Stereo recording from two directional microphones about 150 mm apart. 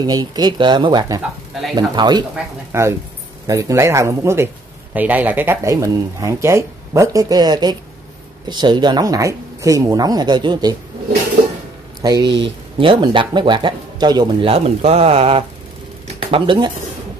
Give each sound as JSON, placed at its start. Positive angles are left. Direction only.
{"t": 0.0, "sound": "speech", "side_deg": -25}
{"t": 2.7, "sound": "speech", "side_deg": -20}
{"t": 12.0, "sound": "speech", "side_deg": -25}
{"t": 14.8, "sound": "speech", "side_deg": -45}